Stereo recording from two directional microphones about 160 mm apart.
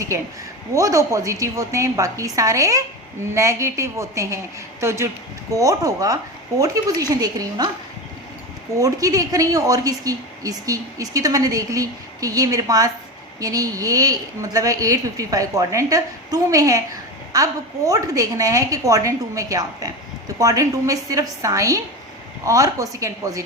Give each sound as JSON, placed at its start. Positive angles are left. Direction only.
{"t": 0.7, "sound": "a woman's voice", "side_deg": -20}
{"t": 7.2, "sound": "a woman's voice", "side_deg": -25}
{"t": 8.8, "sound": "a woman's voice", "side_deg": -20}